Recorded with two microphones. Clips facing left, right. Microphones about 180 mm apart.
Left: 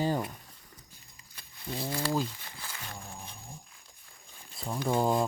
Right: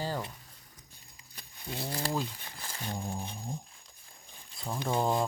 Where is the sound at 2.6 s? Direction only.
35° right (ahead or behind).